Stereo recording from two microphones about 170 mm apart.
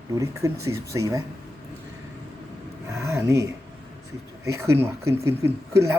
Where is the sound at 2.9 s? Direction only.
15° right (ahead or behind).